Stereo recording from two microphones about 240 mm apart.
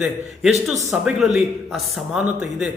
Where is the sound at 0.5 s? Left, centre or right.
Right.